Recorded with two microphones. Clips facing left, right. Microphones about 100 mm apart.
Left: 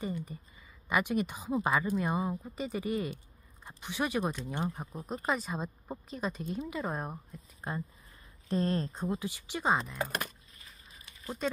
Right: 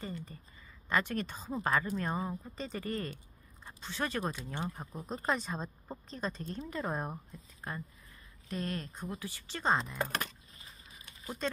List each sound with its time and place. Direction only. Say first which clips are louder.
0.0 s speech: left 5 dB; 15° left (ahead or behind)
8.5 s speech: left 7 dB; 30° left (ahead or behind); by 10.1 s centre (ahead or behind)